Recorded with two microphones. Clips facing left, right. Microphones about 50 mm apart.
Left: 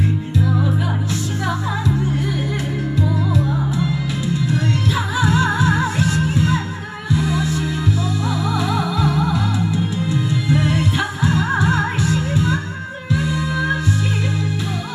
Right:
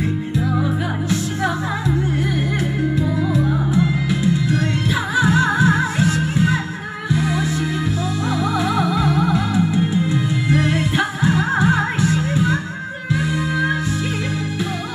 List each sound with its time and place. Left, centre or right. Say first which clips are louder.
0.5 s music: right 1 dB; centre
3.0 s music: left 2 dB; centre
4.5 s music: even; right
5.1 s music: right 3 dB; centre